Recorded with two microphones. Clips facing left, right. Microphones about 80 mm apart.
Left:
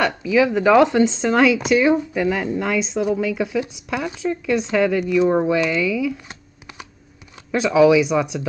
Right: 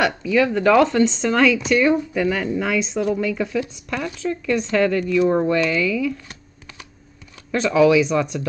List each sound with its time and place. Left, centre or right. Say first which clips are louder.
0.0 s speech: left 1 dB; centre
6.2 s a sound: left 2 dB; left
7.5 s speech: left 1 dB; centre